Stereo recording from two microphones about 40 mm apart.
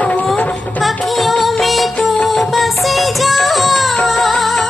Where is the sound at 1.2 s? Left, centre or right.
Centre.